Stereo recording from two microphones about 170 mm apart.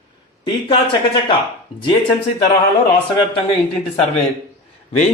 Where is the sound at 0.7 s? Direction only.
30° left (ahead or behind).